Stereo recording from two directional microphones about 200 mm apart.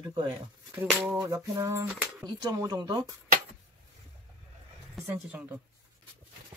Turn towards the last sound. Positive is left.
turn(degrees=-5)  # may be behind; listen again after turning